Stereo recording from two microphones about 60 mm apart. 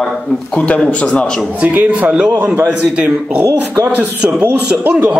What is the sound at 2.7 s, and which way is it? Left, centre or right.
A man's voice, right.